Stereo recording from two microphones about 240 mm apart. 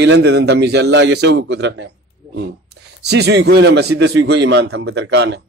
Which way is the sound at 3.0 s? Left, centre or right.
Right.